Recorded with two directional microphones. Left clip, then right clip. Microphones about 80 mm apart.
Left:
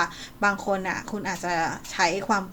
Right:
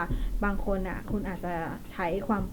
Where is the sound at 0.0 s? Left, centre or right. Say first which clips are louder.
Left 8 dB; left.